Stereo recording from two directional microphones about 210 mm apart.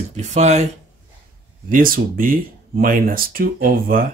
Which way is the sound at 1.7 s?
40° right (ahead or behind).